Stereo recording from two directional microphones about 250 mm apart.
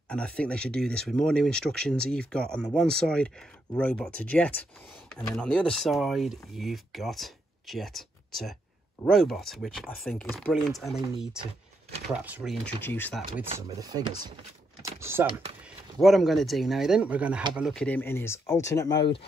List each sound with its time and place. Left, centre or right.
0.1 s speech: centre
12.6 s speech: centre
13.6 s speech: centre